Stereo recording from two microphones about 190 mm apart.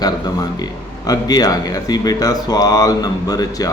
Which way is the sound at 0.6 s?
20° left (ahead or behind).